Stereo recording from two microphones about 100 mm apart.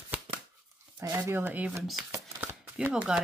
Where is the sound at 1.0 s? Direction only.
25° right (ahead or behind).